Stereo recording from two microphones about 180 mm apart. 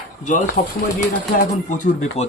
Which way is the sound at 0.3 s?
40° left (ahead or behind).